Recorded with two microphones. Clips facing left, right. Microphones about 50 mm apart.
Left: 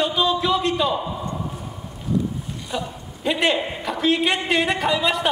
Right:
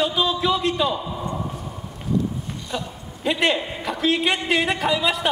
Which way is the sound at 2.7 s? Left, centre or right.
Centre.